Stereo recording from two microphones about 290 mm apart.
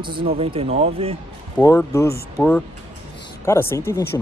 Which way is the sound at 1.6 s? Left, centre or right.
Centre.